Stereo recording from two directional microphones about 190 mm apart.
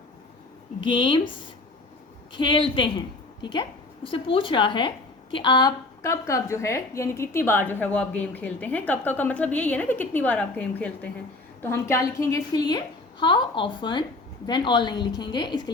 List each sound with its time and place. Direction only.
0.8 s a woman's voice: 25° left (ahead or behind)
2.3 s a woman's voice: 25° left (ahead or behind)